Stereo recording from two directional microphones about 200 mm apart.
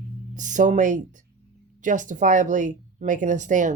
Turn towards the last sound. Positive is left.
turn(degrees=-40)  # may be behind; listen again after turning